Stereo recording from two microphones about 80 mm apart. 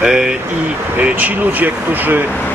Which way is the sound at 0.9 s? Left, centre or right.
Right.